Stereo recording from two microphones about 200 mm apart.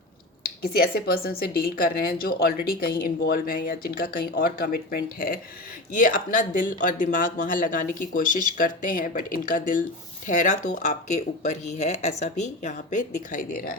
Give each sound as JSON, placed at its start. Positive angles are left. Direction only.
{"t": 0.4, "sound": "speech", "side_deg": 50}